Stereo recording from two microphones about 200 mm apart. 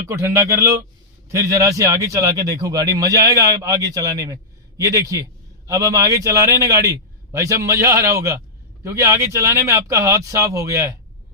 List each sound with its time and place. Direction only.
0.1 s speech: 15° right (ahead or behind)